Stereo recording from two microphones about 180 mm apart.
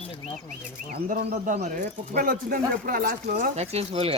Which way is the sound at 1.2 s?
40° right (ahead or behind).